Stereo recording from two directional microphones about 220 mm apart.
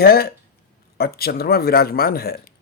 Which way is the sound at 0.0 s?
45° left (ahead or behind).